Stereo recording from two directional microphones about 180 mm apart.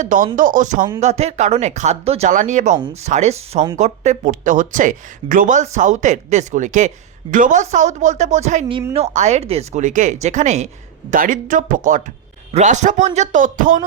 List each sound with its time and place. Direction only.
0.0 s speech: 45° right (ahead or behind)